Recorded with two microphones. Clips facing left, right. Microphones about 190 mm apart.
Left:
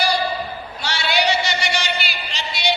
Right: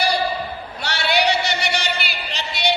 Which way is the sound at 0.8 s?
60° right (ahead or behind).